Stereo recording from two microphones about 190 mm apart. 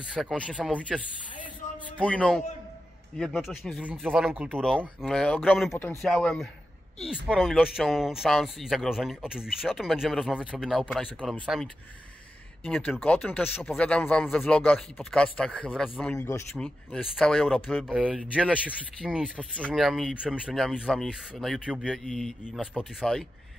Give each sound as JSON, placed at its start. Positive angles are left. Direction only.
{"t": 0.1, "sound": "speech", "side_deg": 0}
{"t": 2.0, "sound": "speech", "side_deg": 5}
{"t": 4.6, "sound": "speech", "side_deg": 5}